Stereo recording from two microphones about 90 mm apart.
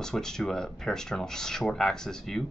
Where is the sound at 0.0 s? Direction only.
5° left (ahead or behind).